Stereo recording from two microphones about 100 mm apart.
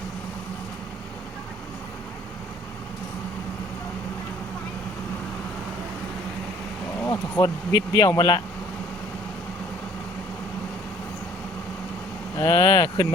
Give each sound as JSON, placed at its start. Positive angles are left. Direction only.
{"t": 7.1, "sound": "speech", "side_deg": 35}
{"t": 12.4, "sound": "speech", "side_deg": 40}